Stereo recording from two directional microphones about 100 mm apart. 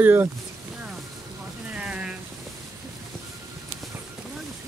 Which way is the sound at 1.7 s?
10° right (ahead or behind).